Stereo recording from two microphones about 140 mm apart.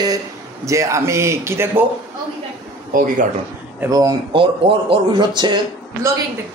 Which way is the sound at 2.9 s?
90° right.